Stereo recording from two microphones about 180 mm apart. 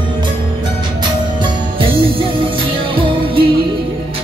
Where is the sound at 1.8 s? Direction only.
30° right (ahead or behind).